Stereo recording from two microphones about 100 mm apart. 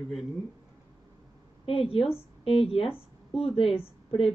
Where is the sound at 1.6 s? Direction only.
75° left (ahead or behind).